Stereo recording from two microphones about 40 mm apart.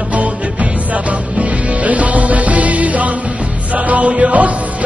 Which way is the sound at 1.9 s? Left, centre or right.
Right.